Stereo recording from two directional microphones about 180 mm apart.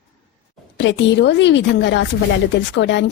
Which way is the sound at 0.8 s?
85° left.